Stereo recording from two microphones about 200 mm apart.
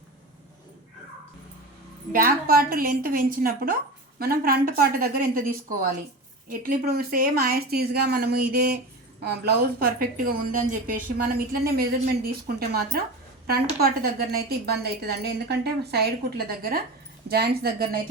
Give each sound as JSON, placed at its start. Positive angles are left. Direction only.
{"t": 2.1, "sound": "a woman's voice", "side_deg": -45}